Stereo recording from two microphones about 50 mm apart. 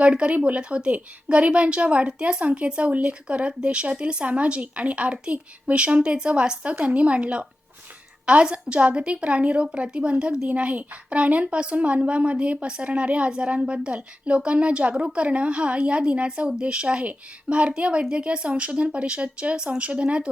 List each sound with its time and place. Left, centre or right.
0.0 s speech: right